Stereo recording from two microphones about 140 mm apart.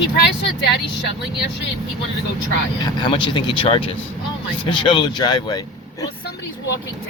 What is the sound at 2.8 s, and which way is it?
Speech, 35° left (ahead or behind).